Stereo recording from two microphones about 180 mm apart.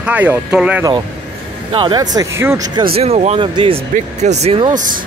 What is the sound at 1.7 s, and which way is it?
Speech, 25° right (ahead or behind).